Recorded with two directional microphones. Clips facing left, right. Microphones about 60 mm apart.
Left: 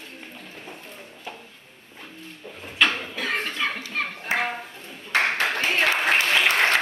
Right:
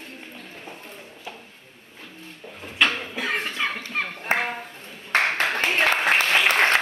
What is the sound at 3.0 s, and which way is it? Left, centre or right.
Clapping, right.